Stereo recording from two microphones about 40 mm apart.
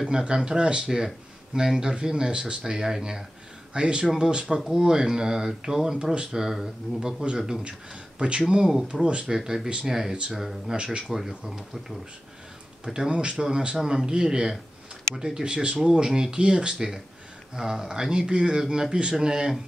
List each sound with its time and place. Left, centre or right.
0.0 s speech: right
0.9 s speech: centre
4.6 s speech: centre
4.8 s speech: centre
7.6 s speech: right
9.3 s speech: centre
10.8 s speech: right
11.1 s speech: centre
13.1 s speech: right